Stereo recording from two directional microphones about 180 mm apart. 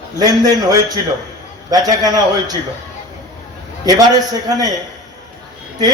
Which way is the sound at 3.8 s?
20° right (ahead or behind).